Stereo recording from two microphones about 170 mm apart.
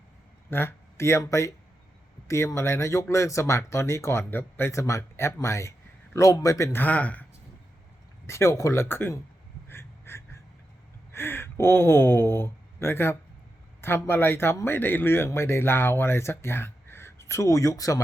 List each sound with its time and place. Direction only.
0.5 s speech: 15° left (ahead or behind)
8.3 s speech: 15° left (ahead or behind)
9.6 s a sound: 15° left (ahead or behind)
11.1 s speech: 15° left (ahead or behind)